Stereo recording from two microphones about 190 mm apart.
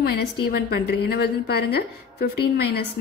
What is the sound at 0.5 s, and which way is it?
A woman's voice, 55° left (ahead or behind).